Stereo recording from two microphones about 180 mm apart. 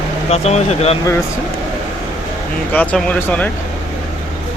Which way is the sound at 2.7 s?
5° left (ahead or behind).